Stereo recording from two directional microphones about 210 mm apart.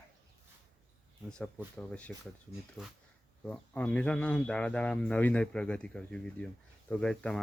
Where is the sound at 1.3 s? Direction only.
5° left (ahead or behind).